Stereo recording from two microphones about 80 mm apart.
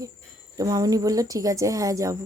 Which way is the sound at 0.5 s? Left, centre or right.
Right.